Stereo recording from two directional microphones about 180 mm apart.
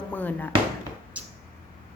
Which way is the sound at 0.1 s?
10° left (ahead or behind).